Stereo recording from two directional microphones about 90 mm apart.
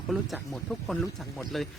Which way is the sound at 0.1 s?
Centre (ahead or behind).